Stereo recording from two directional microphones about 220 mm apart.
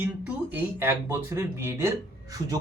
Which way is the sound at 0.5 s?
10° right (ahead or behind).